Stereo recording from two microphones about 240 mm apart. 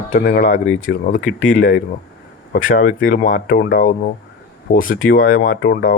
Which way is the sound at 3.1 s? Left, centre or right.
Left.